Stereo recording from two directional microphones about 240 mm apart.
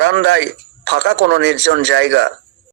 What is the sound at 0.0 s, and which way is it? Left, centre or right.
Speech, right.